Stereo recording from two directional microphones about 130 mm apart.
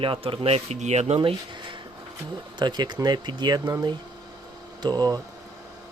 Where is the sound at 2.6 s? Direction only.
35° right (ahead or behind).